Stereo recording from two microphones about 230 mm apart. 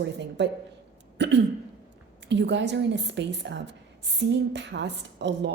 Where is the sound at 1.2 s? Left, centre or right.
Right.